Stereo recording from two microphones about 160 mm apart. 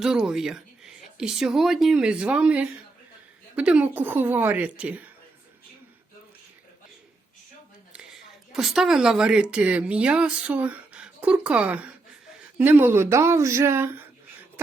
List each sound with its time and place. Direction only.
0.0 s speech: 5° right (ahead or behind)
8.5 s speech: centre (ahead or behind)